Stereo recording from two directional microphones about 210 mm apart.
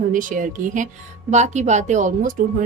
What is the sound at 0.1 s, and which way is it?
Speech, 40° right (ahead or behind).